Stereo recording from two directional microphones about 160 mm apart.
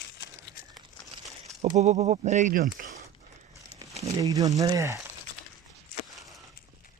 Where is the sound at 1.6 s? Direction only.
45° right (ahead or behind).